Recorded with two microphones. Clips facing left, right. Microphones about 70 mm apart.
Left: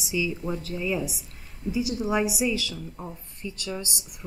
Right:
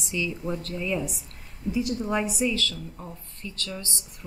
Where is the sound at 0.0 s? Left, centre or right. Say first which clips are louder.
Left 2 dB; centre.